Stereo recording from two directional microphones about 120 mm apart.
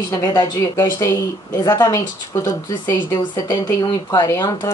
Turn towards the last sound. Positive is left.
turn(degrees=35)  # may be behind; listen again after turning